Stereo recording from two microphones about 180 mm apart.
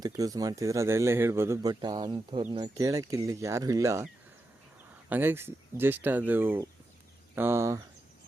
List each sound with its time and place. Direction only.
0.0 s a man's voice: 20° right (ahead or behind)
5.0 s a man's voice: 10° right (ahead or behind)